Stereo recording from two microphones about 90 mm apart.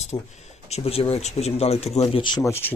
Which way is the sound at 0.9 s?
90° left.